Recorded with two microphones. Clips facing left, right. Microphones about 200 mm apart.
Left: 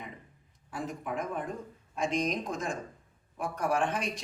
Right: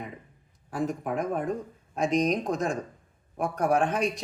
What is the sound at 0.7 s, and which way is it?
Speech, 45° right (ahead or behind).